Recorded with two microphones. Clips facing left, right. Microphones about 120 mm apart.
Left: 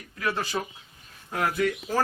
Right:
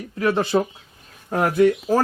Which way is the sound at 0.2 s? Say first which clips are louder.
Right 9 dB; 30° right (ahead or behind).